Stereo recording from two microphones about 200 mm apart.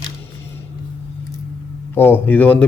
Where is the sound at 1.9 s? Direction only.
10° left (ahead or behind).